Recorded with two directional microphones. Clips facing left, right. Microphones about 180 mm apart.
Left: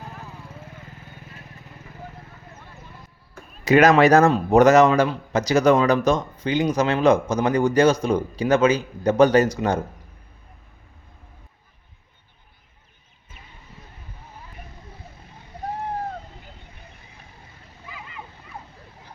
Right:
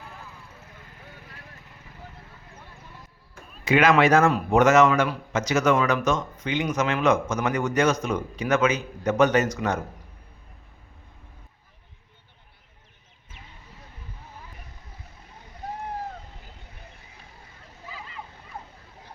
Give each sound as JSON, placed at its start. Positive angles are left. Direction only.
{"t": 0.0, "sound": "vehicle", "side_deg": 35}
{"t": 3.6, "sound": "a man's voice", "side_deg": 40}